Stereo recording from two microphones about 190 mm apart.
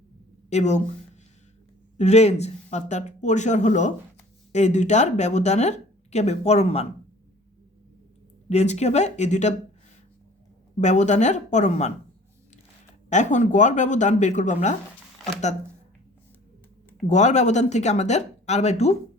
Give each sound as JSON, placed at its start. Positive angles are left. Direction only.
{"t": 0.5, "sound": "speech", "side_deg": 35}
{"t": 2.0, "sound": "speech", "side_deg": 35}
{"t": 8.4, "sound": "speech", "side_deg": 35}
{"t": 10.8, "sound": "speech", "side_deg": 40}
{"t": 13.1, "sound": "speech", "side_deg": 40}
{"t": 17.1, "sound": "speech", "side_deg": 40}